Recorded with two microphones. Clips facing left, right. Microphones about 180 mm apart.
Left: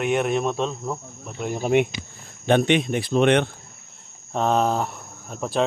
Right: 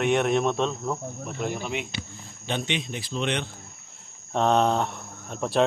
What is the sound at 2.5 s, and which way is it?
Speech, 55° left (ahead or behind).